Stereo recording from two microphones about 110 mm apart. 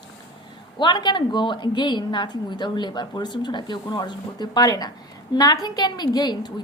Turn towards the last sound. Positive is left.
turn(degrees=40)  # may be behind; listen again after turning